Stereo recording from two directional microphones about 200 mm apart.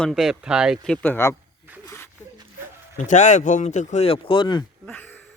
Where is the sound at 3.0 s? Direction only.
35° left (ahead or behind).